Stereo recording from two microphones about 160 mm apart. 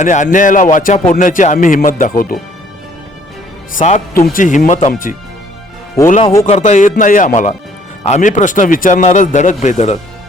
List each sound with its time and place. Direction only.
0.0 s speech: 50° left (ahead or behind)
3.7 s speech: 50° left (ahead or behind)
6.4 s speech: 50° left (ahead or behind)